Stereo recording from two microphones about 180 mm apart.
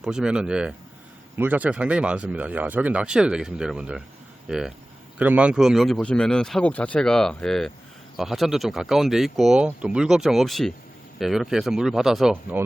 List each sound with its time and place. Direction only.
0.0 s speech: 5° right (ahead or behind)